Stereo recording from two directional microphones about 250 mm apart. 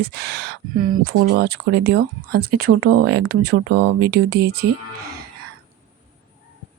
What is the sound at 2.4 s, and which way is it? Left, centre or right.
Speech, right.